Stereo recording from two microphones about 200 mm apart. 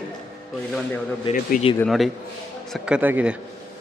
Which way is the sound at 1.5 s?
40° left (ahead or behind).